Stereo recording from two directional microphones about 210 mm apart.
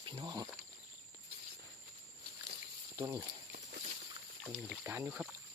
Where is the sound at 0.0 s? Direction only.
20° right (ahead or behind).